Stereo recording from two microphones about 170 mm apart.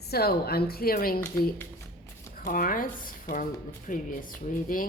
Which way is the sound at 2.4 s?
55° left (ahead or behind).